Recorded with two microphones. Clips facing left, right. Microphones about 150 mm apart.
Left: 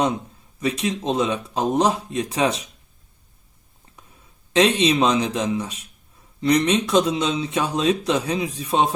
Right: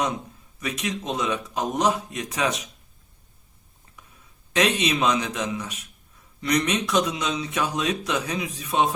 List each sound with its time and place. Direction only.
0.6 s speech: 30° left (ahead or behind)
4.5 s speech: 30° left (ahead or behind)